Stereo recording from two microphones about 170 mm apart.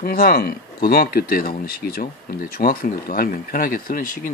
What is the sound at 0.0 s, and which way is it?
Speech, 60° left (ahead or behind).